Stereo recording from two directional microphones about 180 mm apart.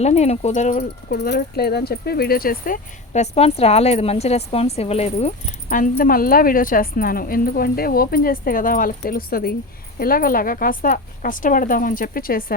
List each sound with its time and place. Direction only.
0.0 s speech: 35° left (ahead or behind)
1.1 s speech: 65° left (ahead or behind)